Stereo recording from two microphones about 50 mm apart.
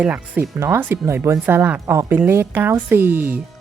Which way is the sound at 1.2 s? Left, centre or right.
Right.